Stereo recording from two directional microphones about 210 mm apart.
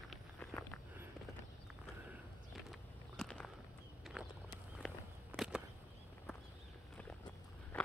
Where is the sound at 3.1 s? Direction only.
5° left (ahead or behind).